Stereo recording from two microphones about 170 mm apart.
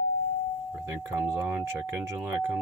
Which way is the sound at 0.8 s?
15° right (ahead or behind).